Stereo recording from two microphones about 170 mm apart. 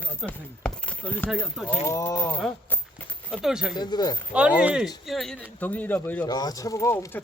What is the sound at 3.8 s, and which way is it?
Speech, 25° left (ahead or behind).